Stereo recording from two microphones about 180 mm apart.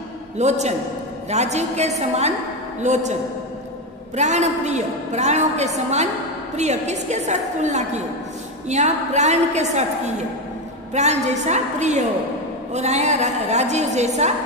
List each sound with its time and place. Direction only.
0.4 s a woman's voice: 40° right (ahead or behind)